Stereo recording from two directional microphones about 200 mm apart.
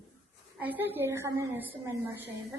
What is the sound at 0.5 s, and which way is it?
A woman's voice, 10° right (ahead or behind).